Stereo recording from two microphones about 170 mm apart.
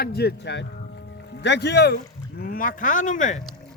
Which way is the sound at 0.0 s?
70° left (ahead or behind).